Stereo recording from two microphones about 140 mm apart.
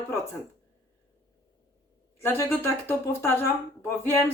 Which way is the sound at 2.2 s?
15° left (ahead or behind).